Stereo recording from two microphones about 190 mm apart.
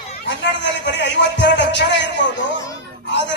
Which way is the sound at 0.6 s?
70° left (ahead or behind).